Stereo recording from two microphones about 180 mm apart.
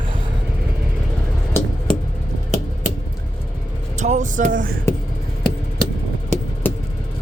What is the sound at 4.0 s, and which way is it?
Speech, 45° right (ahead or behind).